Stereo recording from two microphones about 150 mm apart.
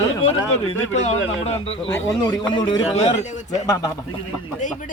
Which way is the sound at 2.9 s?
50° left (ahead or behind).